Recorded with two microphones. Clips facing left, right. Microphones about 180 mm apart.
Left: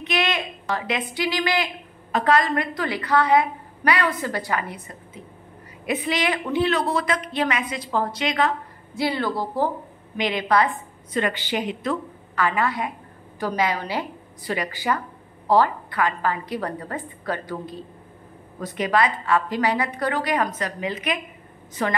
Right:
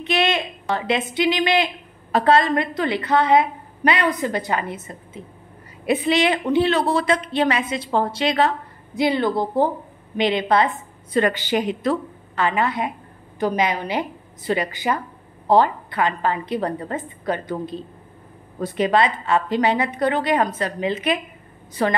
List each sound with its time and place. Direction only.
0.0 s a woman's voice: 25° right (ahead or behind)
8.9 s a woman's voice: 20° right (ahead or behind)
11.1 s a woman's voice: 40° right (ahead or behind)
12.4 s a woman's voice: 25° right (ahead or behind)